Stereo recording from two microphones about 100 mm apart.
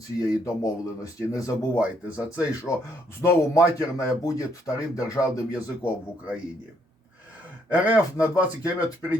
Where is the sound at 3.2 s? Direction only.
30° left (ahead or behind).